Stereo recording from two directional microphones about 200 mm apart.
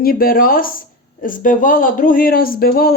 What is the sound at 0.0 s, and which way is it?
Speech, 50° left (ahead or behind).